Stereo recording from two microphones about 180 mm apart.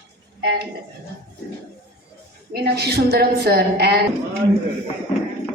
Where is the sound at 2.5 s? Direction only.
65° right (ahead or behind).